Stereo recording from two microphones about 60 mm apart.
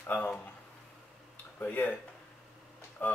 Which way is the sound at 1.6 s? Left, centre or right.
Left.